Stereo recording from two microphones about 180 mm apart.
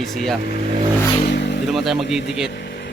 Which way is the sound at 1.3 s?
65° left (ahead or behind).